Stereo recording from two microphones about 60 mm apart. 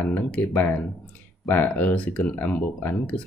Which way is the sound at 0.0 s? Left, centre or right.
Left.